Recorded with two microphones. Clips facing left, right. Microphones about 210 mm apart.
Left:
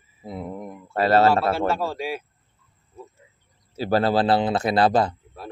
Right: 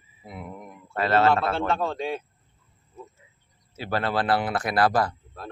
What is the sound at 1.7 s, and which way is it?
Speech, 5° left (ahead or behind).